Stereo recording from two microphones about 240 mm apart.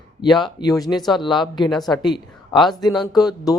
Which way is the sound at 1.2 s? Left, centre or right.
Centre.